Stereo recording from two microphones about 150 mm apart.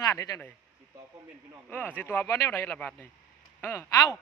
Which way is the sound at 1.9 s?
15° left (ahead or behind).